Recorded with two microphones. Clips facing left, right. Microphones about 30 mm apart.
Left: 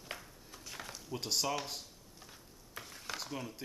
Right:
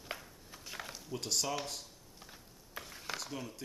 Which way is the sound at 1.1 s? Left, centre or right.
Centre.